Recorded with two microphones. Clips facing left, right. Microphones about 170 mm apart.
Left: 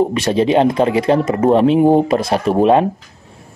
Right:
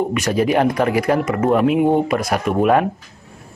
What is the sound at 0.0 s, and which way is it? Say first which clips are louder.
Speech: left 3 dB; 30° left (ahead or behind).